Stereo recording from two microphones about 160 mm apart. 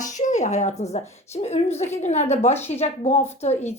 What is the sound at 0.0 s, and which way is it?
A woman's voice, 50° left (ahead or behind).